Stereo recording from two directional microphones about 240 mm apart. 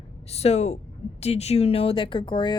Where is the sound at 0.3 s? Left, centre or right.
Left.